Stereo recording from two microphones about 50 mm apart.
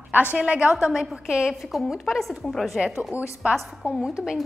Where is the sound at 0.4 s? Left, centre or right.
Right.